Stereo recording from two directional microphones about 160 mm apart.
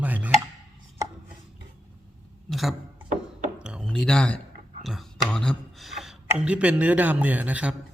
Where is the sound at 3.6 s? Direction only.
5° right (ahead or behind).